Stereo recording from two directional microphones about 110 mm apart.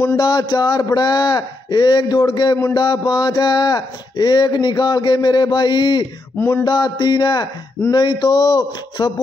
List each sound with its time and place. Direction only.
0.2 s a man's voice: 40° left (ahead or behind)